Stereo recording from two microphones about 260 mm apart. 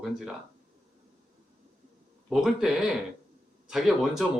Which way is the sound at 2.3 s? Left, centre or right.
Centre.